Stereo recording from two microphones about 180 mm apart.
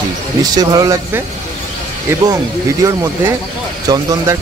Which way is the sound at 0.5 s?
20° right (ahead or behind).